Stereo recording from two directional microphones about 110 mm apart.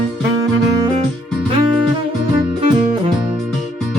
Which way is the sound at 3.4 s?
Centre (ahead or behind).